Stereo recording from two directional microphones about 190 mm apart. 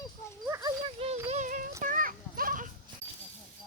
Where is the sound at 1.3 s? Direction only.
40° right (ahead or behind).